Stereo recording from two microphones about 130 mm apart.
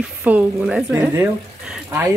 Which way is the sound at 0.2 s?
10° right (ahead or behind).